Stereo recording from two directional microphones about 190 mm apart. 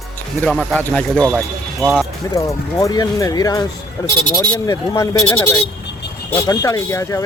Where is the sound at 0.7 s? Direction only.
5° left (ahead or behind).